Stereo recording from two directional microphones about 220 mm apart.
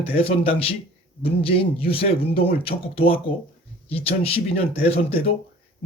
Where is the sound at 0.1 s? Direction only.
25° left (ahead or behind).